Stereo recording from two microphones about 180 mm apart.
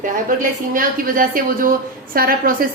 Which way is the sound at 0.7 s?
50° right (ahead or behind).